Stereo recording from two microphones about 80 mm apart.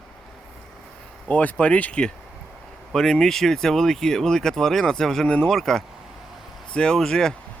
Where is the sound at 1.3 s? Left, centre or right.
Centre.